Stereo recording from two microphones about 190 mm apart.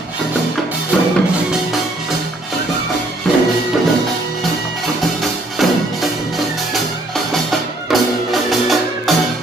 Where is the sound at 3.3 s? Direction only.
Centre (ahead or behind).